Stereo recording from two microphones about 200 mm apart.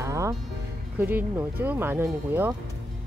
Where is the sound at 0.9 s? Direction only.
10° right (ahead or behind).